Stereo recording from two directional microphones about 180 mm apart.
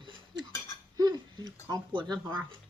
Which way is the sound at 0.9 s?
20° right (ahead or behind).